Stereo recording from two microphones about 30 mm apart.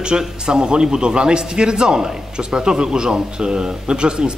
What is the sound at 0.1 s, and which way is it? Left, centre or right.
A man's voice, right.